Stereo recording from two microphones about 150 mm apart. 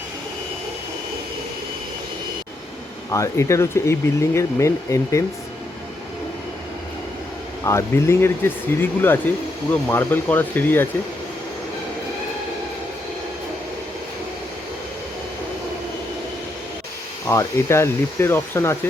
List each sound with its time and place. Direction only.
3.1 s speech: 20° left (ahead or behind)
7.6 s speech: 20° left (ahead or behind)
17.2 s speech: 20° left (ahead or behind)